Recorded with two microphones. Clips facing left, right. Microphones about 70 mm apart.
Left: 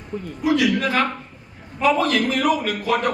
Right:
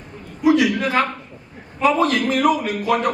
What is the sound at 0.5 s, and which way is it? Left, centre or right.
A man's voice, right.